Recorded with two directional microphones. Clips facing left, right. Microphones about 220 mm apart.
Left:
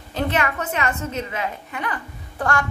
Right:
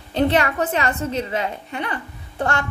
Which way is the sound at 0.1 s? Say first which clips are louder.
Right 5 dB; 30° right (ahead or behind).